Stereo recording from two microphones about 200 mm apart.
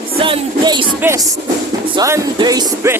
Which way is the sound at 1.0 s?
15° right (ahead or behind).